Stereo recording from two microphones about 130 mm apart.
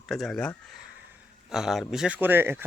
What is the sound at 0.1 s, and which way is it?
Speech, centre (ahead or behind).